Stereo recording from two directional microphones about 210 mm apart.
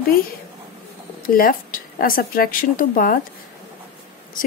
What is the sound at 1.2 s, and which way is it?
Speech, 45° left (ahead or behind).